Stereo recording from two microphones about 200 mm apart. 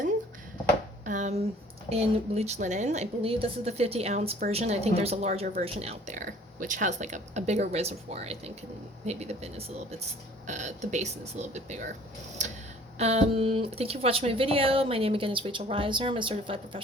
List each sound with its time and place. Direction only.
1.0 s a woman's voice: 40° right (ahead or behind)
13.0 s speech: 30° right (ahead or behind)